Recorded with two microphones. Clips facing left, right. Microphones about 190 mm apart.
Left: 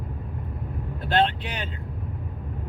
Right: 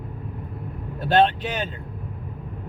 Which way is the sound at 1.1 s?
45° right (ahead or behind).